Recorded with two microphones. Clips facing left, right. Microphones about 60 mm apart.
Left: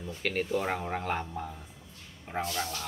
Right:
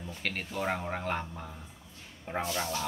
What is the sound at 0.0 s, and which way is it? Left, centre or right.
Speech, centre.